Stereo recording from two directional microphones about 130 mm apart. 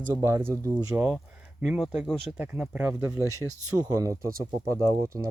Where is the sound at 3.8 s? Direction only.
25° right (ahead or behind).